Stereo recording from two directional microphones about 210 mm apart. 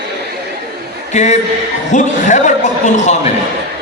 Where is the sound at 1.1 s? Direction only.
35° left (ahead or behind).